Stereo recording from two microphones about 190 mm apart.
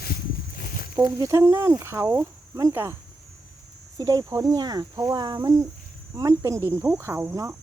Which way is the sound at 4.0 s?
20° right (ahead or behind).